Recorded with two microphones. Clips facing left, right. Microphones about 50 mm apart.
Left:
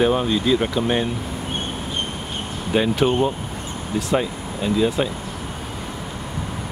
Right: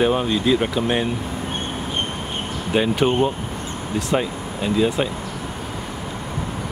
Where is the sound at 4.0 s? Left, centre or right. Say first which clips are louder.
Even; centre.